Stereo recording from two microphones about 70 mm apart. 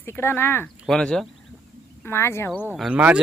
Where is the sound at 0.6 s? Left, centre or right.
Centre.